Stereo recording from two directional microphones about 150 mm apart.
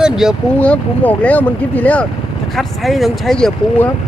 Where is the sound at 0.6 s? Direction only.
10° left (ahead or behind).